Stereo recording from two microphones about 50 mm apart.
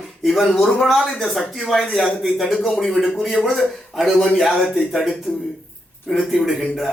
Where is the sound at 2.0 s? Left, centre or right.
Centre.